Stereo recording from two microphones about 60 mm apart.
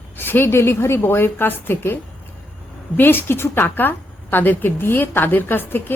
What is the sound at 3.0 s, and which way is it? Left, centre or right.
A woman's voice, left.